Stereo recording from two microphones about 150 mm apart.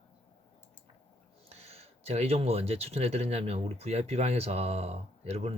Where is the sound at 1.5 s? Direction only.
45° right (ahead or behind).